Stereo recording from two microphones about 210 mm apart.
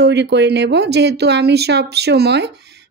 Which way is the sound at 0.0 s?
55° right (ahead or behind).